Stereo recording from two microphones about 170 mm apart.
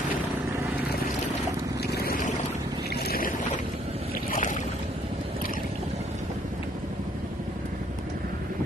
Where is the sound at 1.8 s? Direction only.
70° left (ahead or behind).